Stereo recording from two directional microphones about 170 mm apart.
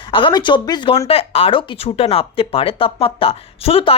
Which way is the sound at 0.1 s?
30° left (ahead or behind).